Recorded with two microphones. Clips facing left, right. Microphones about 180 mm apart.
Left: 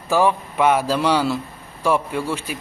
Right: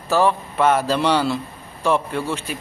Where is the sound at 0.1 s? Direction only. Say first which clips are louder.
Even; 10° left (ahead or behind).